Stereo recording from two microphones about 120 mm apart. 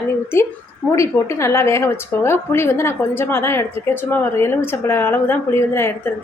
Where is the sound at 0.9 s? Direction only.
25° left (ahead or behind).